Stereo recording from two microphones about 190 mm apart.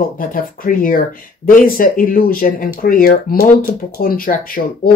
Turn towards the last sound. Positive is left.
turn(degrees=45)  # may be behind; listen again after turning